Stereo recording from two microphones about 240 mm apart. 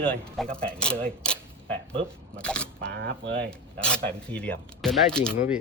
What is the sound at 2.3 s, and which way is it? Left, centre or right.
Speech, centre.